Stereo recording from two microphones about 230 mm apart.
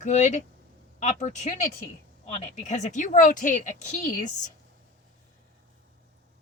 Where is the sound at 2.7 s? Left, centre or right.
Left.